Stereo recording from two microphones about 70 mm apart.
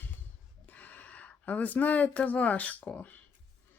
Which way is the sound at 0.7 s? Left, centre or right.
Left.